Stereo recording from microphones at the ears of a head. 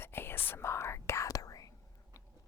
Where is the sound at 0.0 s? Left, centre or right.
Left.